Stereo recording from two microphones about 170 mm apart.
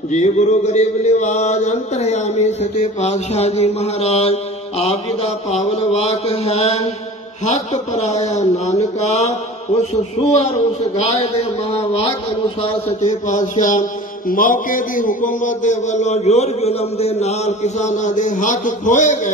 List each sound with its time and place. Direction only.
0.1 s mantra: 45° left (ahead or behind)